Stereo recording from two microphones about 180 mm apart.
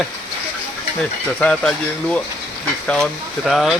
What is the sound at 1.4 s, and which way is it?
Speech, 5° left (ahead or behind).